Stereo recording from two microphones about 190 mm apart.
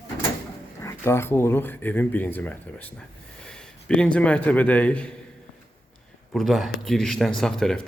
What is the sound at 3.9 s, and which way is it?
Speech, 5° left (ahead or behind).